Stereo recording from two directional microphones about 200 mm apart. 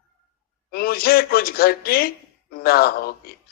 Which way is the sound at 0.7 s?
50° left (ahead or behind).